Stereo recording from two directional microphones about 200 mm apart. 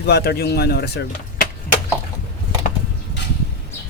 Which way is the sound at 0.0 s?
55° left (ahead or behind).